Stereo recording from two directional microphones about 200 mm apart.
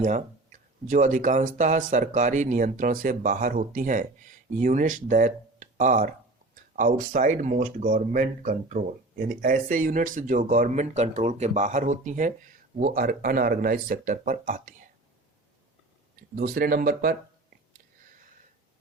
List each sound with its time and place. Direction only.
0.0 s speech: 40° right (ahead or behind)
16.3 s speech: 45° right (ahead or behind)